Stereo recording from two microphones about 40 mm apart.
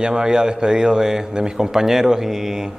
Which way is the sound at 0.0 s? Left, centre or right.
Centre.